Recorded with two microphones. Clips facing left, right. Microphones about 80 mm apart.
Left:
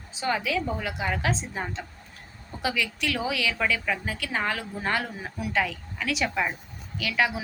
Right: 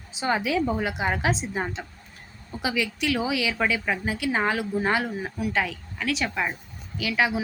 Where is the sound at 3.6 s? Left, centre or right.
Centre.